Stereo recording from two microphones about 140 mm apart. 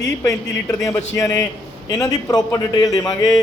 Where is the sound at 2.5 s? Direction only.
25° left (ahead or behind).